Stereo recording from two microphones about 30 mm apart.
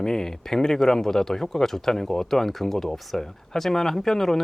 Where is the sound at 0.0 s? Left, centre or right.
Centre.